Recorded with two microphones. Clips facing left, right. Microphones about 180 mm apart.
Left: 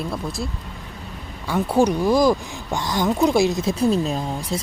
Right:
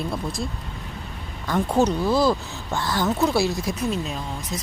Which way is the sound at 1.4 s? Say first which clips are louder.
Left 2 dB; 10° left (ahead or behind).